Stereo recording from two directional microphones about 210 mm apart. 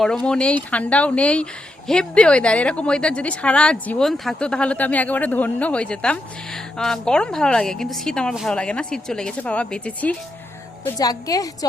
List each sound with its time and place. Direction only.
0.0 s speech: 5° left (ahead or behind)
10.8 s a woman's voice: 20° left (ahead or behind)